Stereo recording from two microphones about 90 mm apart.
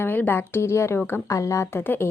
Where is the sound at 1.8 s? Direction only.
25° left (ahead or behind).